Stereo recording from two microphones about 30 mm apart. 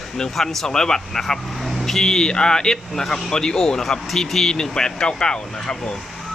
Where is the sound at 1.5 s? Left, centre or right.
Centre; by 3.8 s left.